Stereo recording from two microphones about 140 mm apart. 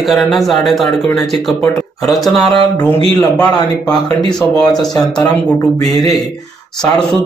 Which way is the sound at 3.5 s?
25° left (ahead or behind).